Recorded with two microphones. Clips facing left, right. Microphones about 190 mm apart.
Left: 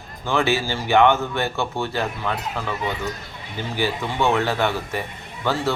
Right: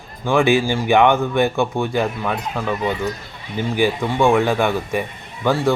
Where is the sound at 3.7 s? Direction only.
15° right (ahead or behind).